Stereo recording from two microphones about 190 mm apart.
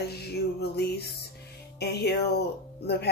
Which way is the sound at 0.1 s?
55° left (ahead or behind).